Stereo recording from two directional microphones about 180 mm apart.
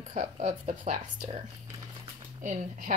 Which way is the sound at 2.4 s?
45° right (ahead or behind).